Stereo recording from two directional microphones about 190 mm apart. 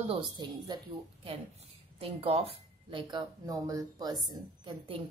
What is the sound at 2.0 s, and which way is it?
A woman's voice, 30° right (ahead or behind).